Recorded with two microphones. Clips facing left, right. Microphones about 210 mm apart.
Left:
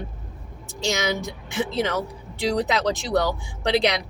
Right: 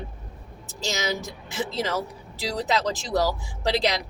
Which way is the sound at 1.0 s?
Centre (ahead or behind).